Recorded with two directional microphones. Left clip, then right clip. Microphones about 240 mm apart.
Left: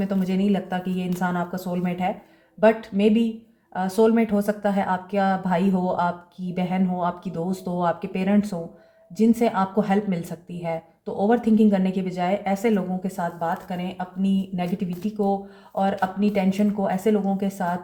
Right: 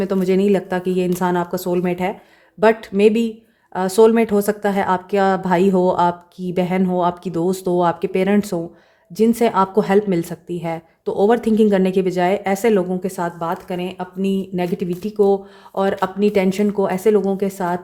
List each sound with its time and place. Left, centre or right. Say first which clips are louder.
0.0 s speech: right 9 dB; right